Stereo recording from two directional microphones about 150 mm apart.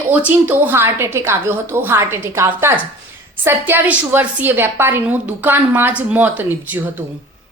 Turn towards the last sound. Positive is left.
turn(degrees=-10)  # may be behind; listen again after turning